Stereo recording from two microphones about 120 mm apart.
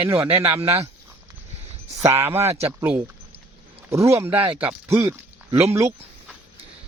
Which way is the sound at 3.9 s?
25° right (ahead or behind).